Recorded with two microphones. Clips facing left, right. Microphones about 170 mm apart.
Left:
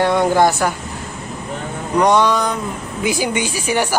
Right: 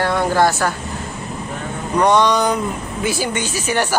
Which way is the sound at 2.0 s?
10° left (ahead or behind).